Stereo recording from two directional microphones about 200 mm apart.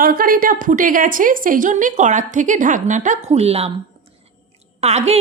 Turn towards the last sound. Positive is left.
turn(degrees=-30)  # may be behind; listen again after turning